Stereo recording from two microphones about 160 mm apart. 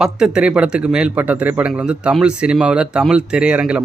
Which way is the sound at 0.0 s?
5° right (ahead or behind).